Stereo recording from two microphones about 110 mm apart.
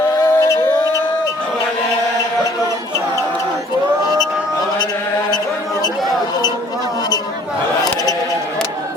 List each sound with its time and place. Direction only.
0.2 s music: 25° left (ahead or behind)